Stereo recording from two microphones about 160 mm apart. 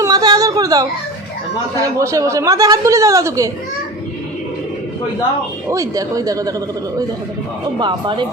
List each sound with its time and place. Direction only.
0.0 s a sound: 25° right (ahead or behind)
2.0 s a woman's voice: 20° right (ahead or behind)
5.6 s a woman's voice: 20° right (ahead or behind)
7.8 s a woman's voice: 30° right (ahead or behind)